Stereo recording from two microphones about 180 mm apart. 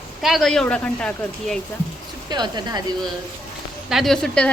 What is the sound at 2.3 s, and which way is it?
Speech, 25° right (ahead or behind).